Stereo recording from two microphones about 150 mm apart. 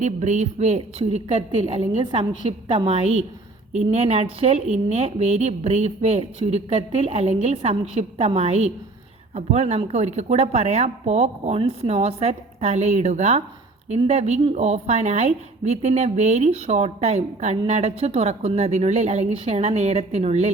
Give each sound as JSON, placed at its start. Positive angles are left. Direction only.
{"t": 0.0, "sound": "a woman's voice", "side_deg": -50}